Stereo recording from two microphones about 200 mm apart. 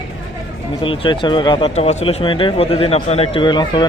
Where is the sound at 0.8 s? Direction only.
25° left (ahead or behind).